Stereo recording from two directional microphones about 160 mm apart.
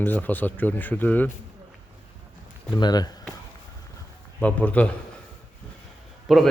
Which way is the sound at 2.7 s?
25° left (ahead or behind).